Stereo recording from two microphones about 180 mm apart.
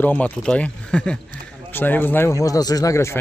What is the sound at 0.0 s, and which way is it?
Speech, 10° left (ahead or behind).